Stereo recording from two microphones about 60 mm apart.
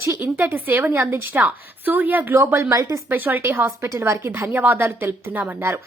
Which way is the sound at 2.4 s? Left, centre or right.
Right.